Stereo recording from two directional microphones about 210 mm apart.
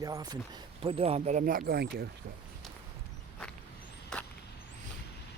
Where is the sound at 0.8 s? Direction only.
30° right (ahead or behind); by 2.0 s 50° right (ahead or behind).